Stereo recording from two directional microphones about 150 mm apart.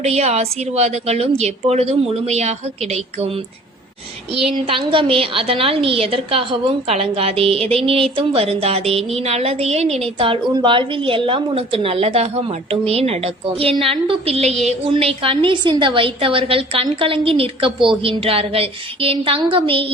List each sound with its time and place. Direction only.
0.0 s a woman's voice: 45° right (ahead or behind)
4.5 s a woman's voice: 35° right (ahead or behind)